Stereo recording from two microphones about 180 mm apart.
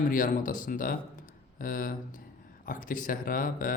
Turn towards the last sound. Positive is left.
turn(degrees=50)  # may be behind; listen again after turning